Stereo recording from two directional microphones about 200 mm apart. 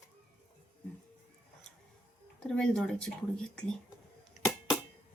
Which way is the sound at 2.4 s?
Centre (ahead or behind).